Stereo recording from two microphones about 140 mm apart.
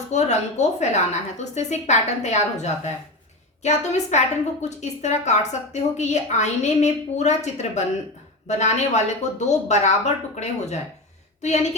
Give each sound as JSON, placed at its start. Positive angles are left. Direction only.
{"t": 0.1, "sound": "a woman's voice", "side_deg": 55}